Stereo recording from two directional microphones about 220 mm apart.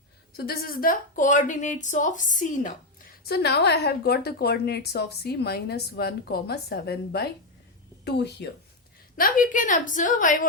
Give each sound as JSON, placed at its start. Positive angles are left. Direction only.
{"t": 0.3, "sound": "a woman's voice", "side_deg": 45}
{"t": 3.2, "sound": "a woman's voice", "side_deg": 45}
{"t": 9.1, "sound": "a woman's voice", "side_deg": 40}